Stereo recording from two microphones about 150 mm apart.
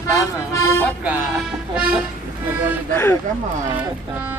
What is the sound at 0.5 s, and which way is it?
Speech, 20° left (ahead or behind).